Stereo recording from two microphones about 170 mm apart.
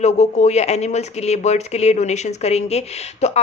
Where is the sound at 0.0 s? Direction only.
40° left (ahead or behind).